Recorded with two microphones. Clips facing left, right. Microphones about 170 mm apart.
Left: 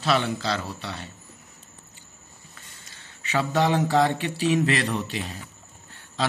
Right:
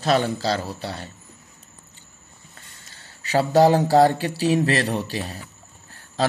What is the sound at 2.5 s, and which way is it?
A man's voice, 35° right (ahead or behind).